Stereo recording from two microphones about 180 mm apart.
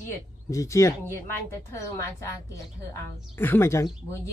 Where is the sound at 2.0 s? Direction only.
15° left (ahead or behind).